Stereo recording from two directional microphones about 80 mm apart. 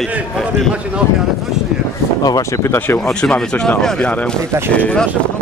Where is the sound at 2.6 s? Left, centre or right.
Left.